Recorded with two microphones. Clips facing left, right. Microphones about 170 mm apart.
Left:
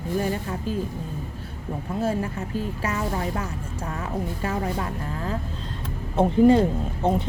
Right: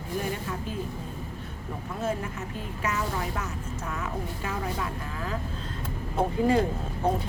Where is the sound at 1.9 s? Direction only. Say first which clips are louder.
Left 5 dB; 30° left (ahead or behind).